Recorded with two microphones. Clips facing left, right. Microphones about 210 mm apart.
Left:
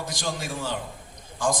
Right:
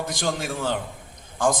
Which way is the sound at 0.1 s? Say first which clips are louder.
Right 4 dB; 55° right (ahead or behind).